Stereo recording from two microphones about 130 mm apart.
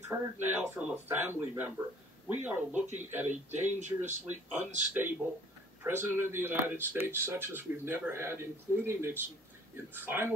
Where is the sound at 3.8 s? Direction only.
65° right (ahead or behind).